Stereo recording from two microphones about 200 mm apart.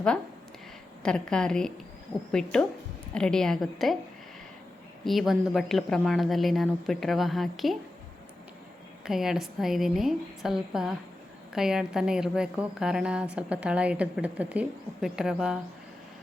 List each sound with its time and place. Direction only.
1.0 s a woman's voice: 5° left (ahead or behind)
5.0 s a woman's voice: centre (ahead or behind)
9.0 s a woman's voice: centre (ahead or behind)